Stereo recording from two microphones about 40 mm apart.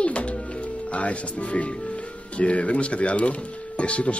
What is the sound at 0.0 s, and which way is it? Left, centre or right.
Speech, left.